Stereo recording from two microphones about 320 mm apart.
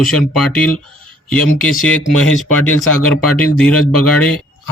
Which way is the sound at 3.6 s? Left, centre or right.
Centre.